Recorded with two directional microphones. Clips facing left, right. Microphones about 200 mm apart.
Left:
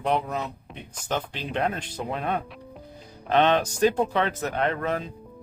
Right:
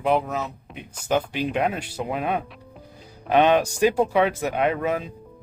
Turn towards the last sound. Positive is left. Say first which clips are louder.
# right 3 dB
turn(degrees=-10)  # may be behind; listen again after turning